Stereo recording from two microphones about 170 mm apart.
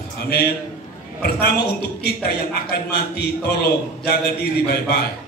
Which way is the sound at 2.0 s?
65° left (ahead or behind).